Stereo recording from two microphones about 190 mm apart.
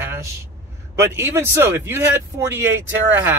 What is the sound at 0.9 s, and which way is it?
Speech, 15° right (ahead or behind).